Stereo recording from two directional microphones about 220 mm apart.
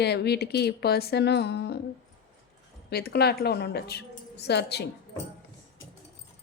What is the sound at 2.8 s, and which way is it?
A woman's voice, 45° left (ahead or behind).